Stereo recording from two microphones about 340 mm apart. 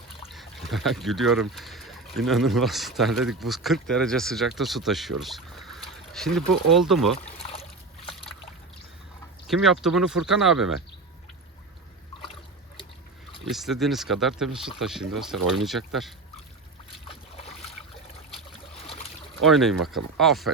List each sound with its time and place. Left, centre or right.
0.3 s speech: centre
7.2 s splash: centre
9.5 s speech: centre
12.2 s a sound: centre
13.5 s speech: centre
19.4 s speech: centre